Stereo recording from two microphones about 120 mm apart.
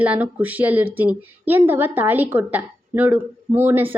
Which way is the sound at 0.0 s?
15° right (ahead or behind).